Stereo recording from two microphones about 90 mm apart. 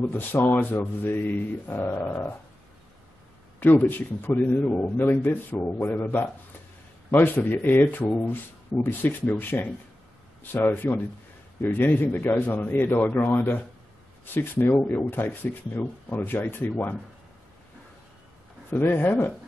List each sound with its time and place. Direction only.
0.1 s a man's voice: 25° left (ahead or behind)
3.5 s a man's voice: 20° left (ahead or behind)
18.7 s a man's voice: 20° left (ahead or behind)